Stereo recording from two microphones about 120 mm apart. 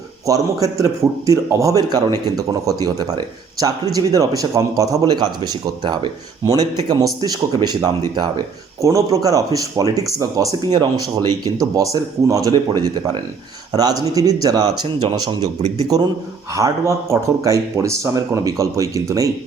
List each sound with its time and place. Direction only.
0.3 s speech: 30° right (ahead or behind)
13.7 s speech: 30° right (ahead or behind)
16.6 s speech: 25° right (ahead or behind)